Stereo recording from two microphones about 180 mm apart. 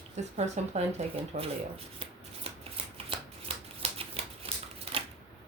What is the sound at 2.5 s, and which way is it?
Shuffling cards, 35° right (ahead or behind).